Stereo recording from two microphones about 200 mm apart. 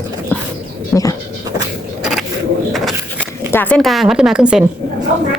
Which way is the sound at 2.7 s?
Centre (ahead or behind).